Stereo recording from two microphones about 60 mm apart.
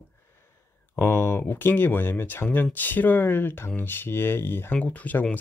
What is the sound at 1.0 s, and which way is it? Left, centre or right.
Speech, left.